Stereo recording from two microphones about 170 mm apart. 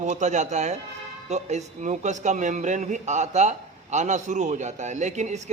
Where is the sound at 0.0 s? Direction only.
45° right (ahead or behind).